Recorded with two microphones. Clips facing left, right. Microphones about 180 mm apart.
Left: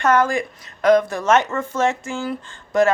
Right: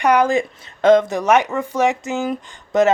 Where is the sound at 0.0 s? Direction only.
15° right (ahead or behind).